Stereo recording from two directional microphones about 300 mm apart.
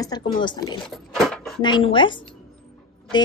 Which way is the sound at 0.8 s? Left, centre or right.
Centre.